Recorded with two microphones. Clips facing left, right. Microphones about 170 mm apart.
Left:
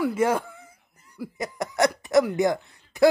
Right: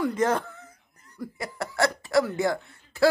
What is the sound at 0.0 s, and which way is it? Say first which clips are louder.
Speech: left 1 dB; 10° left (ahead or behind).